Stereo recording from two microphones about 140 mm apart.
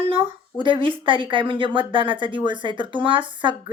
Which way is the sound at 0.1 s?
35° right (ahead or behind).